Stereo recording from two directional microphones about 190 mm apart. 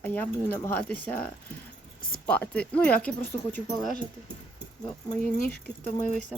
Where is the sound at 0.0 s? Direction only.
10° left (ahead or behind).